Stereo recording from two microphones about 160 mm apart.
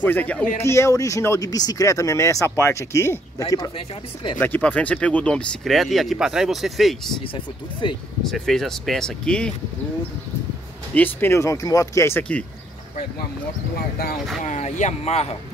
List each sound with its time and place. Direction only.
0.0 s speech: 10° left (ahead or behind); by 4.4 s 30° left (ahead or behind)
4.4 s speech: 10° left (ahead or behind)
8.2 s speech: centre (ahead or behind)
11.0 s speech: 10° left (ahead or behind)
14.4 s speech: 50° left (ahead or behind)